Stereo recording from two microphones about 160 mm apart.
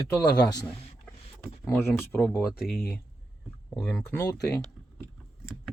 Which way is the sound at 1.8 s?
15° left (ahead or behind).